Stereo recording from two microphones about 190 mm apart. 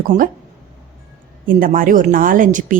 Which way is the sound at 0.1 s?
40° right (ahead or behind).